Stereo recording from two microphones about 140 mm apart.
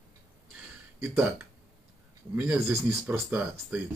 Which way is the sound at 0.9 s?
5° right (ahead or behind).